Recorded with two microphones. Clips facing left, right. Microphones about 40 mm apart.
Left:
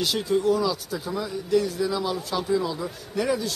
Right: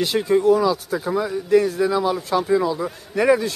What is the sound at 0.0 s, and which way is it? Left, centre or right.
Speech, right.